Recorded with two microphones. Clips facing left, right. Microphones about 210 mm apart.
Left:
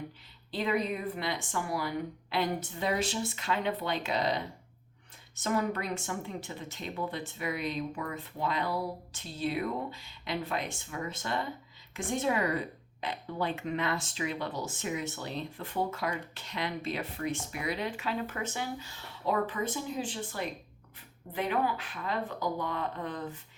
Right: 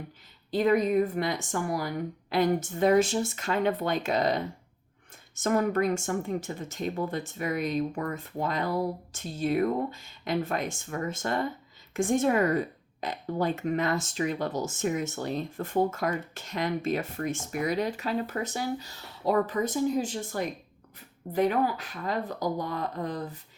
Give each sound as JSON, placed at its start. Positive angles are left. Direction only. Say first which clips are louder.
{"t": 0.5, "sound": "speech", "louder": "right 8 dB", "side_deg": -45}